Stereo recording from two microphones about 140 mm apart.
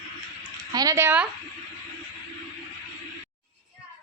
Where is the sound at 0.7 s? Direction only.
25° right (ahead or behind).